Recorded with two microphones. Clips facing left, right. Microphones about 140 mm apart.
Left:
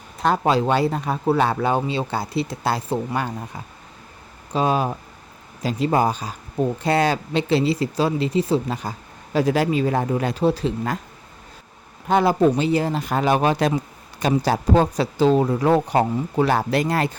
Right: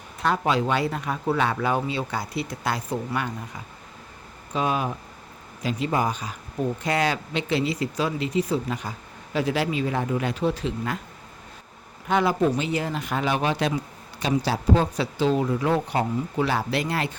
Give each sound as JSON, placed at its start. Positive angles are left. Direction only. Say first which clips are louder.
{"t": 0.2, "sound": "speech", "louder": "left 4 dB", "side_deg": 35}
{"t": 4.5, "sound": "speech", "louder": "left 4 dB", "side_deg": 35}
{"t": 12.0, "sound": "speech", "louder": "left 5 dB", "side_deg": 35}